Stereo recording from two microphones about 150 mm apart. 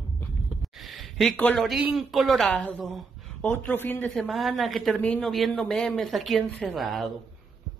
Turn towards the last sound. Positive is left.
turn(degrees=0)  # may be behind; listen again after turning